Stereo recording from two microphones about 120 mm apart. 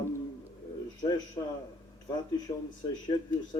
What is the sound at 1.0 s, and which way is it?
Speech, 40° left (ahead or behind).